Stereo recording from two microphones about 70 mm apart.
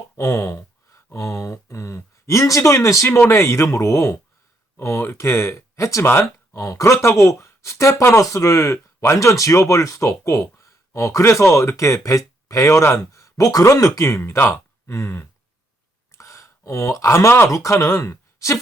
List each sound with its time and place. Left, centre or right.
0.2 s speech: left
3.1 s speech: left
14.2 s speech: left
16.1 s a sound: left
17.1 s speech: left